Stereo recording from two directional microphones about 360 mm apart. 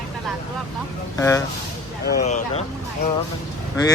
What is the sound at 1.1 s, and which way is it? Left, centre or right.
A man's voice, centre.